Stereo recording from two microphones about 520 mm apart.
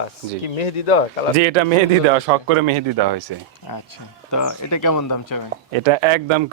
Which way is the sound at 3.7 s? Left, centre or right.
Left.